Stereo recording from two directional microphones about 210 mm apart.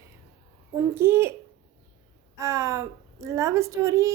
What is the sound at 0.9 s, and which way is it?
Speech, 10° right (ahead or behind).